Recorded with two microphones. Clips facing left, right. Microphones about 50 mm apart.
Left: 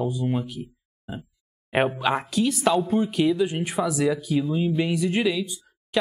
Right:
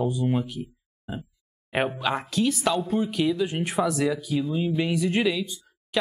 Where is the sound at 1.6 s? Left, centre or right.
Centre.